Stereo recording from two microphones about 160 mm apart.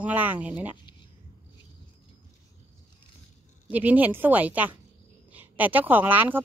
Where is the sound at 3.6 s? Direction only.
10° right (ahead or behind).